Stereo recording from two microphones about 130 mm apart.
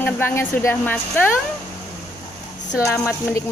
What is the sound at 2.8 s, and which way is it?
Speech, 20° left (ahead or behind).